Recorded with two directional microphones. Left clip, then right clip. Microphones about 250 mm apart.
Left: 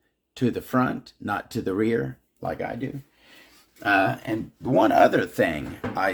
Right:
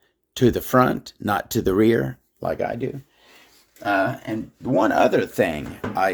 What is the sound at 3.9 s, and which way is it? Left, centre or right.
Speech, centre.